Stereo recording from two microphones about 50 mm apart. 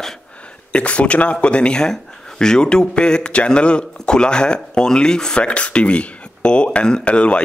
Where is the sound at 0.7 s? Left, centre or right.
Left.